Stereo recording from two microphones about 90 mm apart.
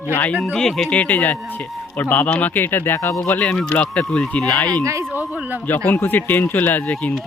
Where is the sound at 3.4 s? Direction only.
10° left (ahead or behind).